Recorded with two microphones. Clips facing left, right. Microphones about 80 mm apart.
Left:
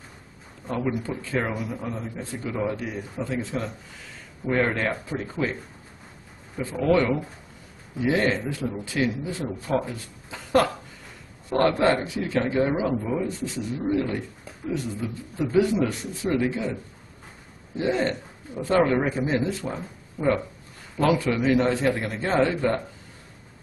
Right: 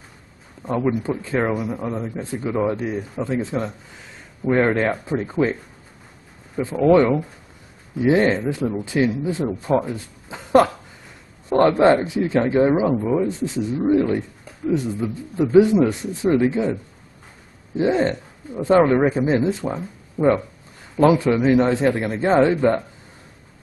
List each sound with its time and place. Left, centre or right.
0.7 s speech: right
1.9 s speech: right
17.7 s speech: right